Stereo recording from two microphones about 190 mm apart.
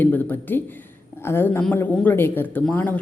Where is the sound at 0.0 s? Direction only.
10° left (ahead or behind).